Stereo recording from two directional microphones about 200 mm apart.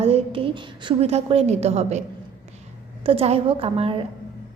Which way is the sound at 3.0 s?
30° right (ahead or behind).